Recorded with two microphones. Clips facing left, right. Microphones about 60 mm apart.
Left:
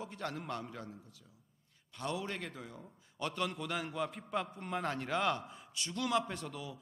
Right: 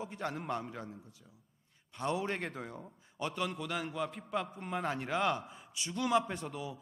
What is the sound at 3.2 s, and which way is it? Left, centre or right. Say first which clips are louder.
A man's voice: right 1 dB; centre.